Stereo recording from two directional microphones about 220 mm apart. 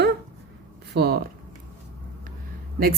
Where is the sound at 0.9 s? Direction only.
45° right (ahead or behind).